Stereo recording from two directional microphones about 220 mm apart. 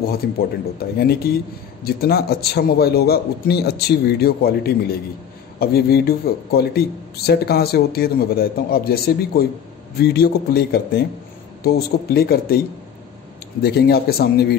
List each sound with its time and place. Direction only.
0.9 s speech: 45° left (ahead or behind)